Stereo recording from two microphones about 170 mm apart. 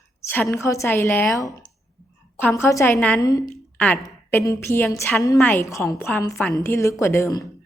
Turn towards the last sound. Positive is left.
turn(degrees=20)  # may be behind; listen again after turning